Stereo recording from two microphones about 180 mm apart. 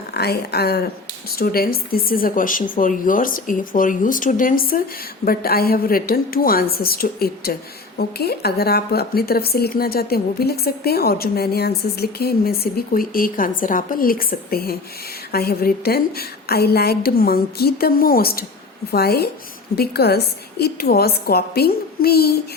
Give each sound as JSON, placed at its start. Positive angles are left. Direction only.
{"t": 0.1, "sound": "speech", "side_deg": 60}